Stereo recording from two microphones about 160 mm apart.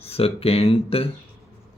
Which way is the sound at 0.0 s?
40° left (ahead or behind).